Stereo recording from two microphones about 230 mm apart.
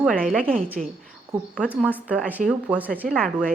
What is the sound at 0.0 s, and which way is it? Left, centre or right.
Speech, centre.